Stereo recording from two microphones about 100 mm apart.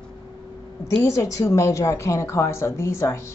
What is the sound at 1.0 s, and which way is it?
A woman's voice, 30° left (ahead or behind).